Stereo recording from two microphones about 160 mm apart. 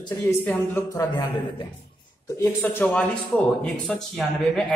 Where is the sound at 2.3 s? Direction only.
15° left (ahead or behind).